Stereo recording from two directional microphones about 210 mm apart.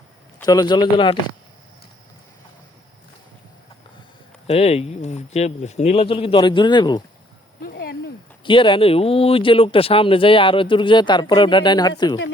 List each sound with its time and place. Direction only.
0.4 s speech: 20° left (ahead or behind)
4.4 s speech: 30° left (ahead or behind)
7.6 s a sound: 50° left (ahead or behind)
8.4 s speech: 25° left (ahead or behind)